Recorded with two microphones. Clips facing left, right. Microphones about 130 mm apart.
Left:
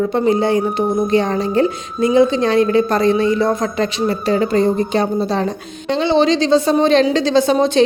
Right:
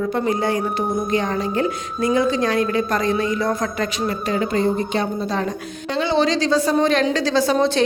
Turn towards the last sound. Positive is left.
turn(degrees=20)  # may be behind; listen again after turning